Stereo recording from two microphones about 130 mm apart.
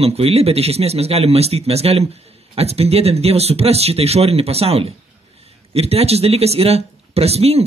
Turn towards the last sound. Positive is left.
turn(degrees=-50)  # may be behind; listen again after turning